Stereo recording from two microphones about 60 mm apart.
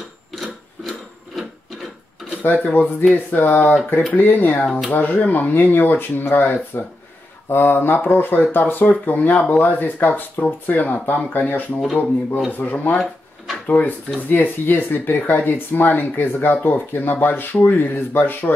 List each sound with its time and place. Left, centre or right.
2.4 s speech: left
4.6 s speech: centre
4.9 s speech: left